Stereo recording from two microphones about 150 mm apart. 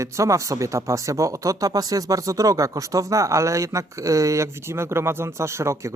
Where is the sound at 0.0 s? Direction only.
20° right (ahead or behind).